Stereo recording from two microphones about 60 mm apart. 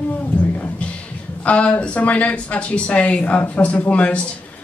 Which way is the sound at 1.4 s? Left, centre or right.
Left.